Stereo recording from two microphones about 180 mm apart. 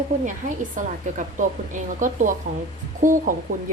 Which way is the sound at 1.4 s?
45° right (ahead or behind).